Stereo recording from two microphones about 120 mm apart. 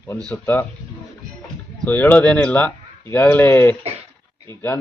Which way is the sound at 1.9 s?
15° left (ahead or behind).